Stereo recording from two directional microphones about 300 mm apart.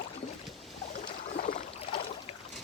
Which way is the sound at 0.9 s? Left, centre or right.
Left.